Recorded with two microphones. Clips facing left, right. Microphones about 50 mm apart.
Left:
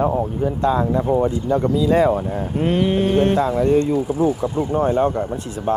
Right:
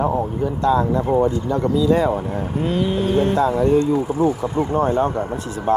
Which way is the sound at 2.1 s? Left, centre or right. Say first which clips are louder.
Left 1 dB; centre.